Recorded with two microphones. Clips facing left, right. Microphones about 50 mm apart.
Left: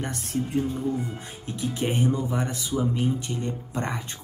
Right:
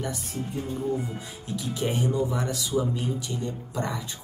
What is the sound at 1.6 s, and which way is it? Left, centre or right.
Speech, left.